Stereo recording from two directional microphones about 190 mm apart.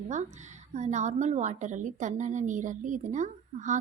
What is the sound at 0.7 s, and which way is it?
A woman's voice, 40° right (ahead or behind).